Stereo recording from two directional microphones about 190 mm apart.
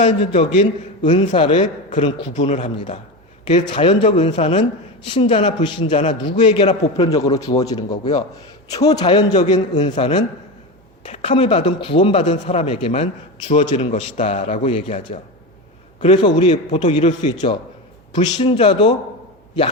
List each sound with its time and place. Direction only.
0.0 s a man's voice: 35° left (ahead or behind)
7.5 s a man's voice: 20° left (ahead or behind)